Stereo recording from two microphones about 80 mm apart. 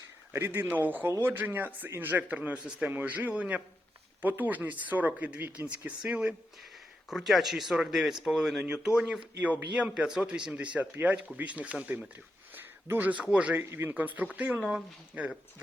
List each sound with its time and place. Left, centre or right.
0.3 s a man's voice: right
0.6 s speech: right
7.1 s speech: centre